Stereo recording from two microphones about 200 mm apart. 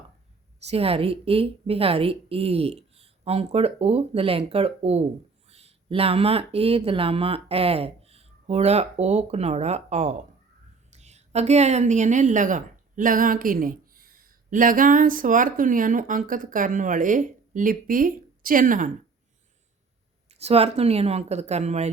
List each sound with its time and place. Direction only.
0.6 s a woman's voice: 30° right (ahead or behind)
20.2 s speech: 30° right (ahead or behind)